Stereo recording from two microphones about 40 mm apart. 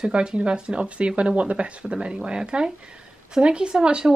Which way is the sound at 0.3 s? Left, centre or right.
Centre.